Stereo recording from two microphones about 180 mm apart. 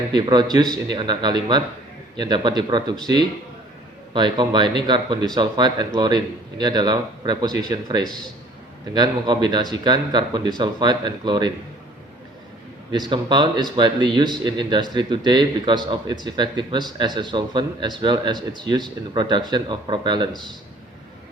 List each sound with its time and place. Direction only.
0.1 s speech: 25° right (ahead or behind)
13.1 s speech: 25° right (ahead or behind)